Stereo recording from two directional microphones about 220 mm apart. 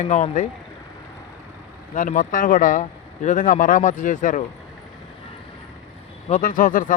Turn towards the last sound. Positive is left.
turn(degrees=40)  # may be behind; listen again after turning